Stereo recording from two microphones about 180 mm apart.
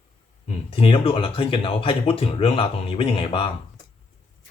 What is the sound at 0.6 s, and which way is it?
Speech, 30° left (ahead or behind).